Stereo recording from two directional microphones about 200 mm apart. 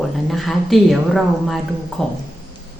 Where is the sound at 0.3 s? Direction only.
Centre (ahead or behind).